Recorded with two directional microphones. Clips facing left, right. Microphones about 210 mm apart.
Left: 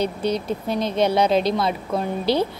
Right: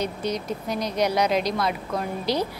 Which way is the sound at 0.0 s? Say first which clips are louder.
Left 4 dB; 30° left (ahead or behind).